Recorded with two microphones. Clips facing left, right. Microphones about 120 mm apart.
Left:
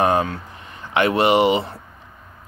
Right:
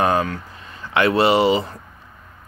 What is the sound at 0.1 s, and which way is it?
Speech, 25° left (ahead or behind).